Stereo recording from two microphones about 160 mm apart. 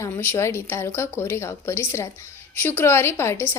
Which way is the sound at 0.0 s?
15° left (ahead or behind).